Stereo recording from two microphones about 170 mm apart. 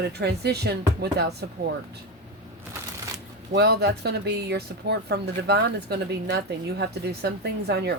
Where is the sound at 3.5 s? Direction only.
80° right.